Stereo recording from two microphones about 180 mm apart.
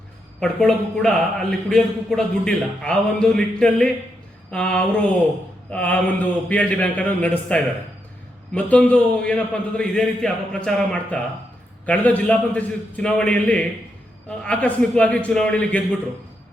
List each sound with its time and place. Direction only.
0.3 s a man's voice: 5° left (ahead or behind)